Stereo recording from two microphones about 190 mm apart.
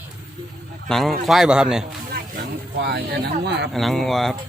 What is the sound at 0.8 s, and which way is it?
Speech, centre (ahead or behind).